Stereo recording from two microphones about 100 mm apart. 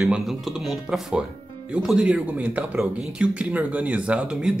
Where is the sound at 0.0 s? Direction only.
Centre (ahead or behind).